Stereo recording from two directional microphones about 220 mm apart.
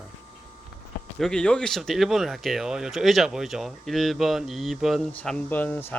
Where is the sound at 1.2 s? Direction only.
5° left (ahead or behind).